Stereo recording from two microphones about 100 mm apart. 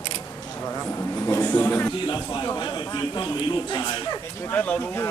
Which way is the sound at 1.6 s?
20° left (ahead or behind).